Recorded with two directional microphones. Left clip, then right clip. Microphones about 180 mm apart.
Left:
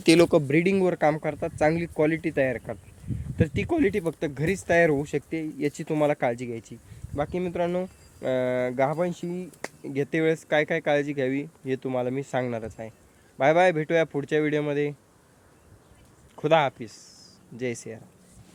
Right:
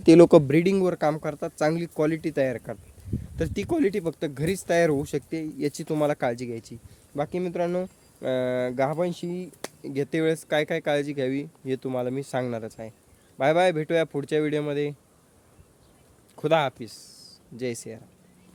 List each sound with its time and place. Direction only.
0.2 s speech: 55° right (ahead or behind)
0.4 s speech: 30° right (ahead or behind)
0.7 s speech: 15° right (ahead or behind)
16.3 s speech: 10° right (ahead or behind)